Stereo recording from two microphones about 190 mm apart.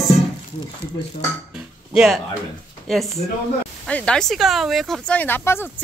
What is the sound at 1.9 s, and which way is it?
Speech, centre (ahead or behind).